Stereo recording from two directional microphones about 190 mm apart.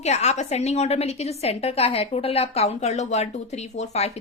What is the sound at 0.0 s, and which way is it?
A woman's voice, 35° left (ahead or behind).